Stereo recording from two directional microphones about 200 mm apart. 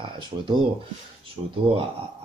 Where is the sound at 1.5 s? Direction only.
25° right (ahead or behind).